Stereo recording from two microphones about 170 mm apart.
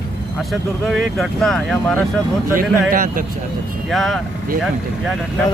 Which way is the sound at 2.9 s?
55° right (ahead or behind).